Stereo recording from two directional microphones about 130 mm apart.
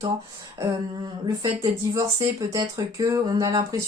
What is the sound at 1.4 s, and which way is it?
Speech, 30° right (ahead or behind).